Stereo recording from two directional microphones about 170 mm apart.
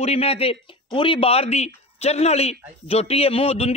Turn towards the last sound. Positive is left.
turn(degrees=35)  # may be behind; listen again after turning